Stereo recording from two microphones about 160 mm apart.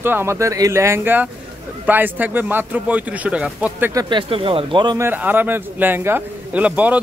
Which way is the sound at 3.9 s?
25° right (ahead or behind).